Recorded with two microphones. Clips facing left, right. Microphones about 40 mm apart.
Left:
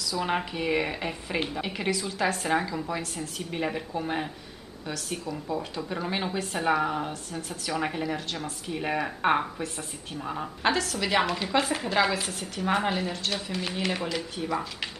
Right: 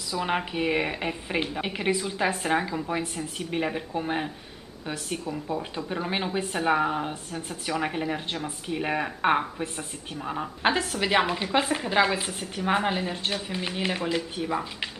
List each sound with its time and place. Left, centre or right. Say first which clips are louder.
0.2 s speech: right 1 dB; centre
0.5 s a woman's voice: right 1 dB; centre
5.2 s a woman's voice: right 1 dB; right
7.7 s speech: right 1 dB; centre
8.0 s a woman's voice: right 1 dB; right
10.6 s a woman's voice: right 1 dB; right